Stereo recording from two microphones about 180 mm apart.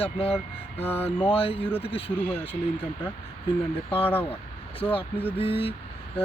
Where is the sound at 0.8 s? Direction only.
10° left (ahead or behind).